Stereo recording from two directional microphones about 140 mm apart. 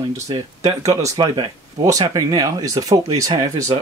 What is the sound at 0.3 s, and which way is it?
Speech, 25° right (ahead or behind).